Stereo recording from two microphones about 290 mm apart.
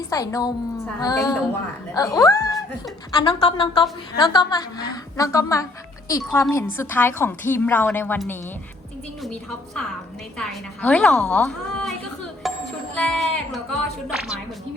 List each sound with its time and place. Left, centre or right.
0.1 s a woman's voice: centre
10.3 s a woman's voice: centre